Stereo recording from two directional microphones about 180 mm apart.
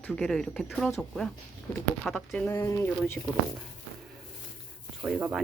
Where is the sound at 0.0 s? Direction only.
5° left (ahead or behind).